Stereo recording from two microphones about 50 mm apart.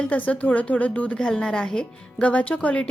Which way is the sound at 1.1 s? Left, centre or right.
Centre.